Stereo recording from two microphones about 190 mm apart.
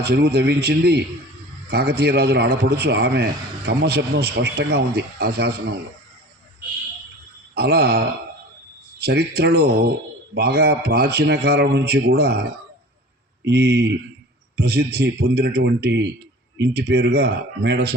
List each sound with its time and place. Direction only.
0.0 s a man's voice: 60° right (ahead or behind)
7.5 s a man's voice: 55° right (ahead or behind)
13.4 s a man's voice: 60° right (ahead or behind)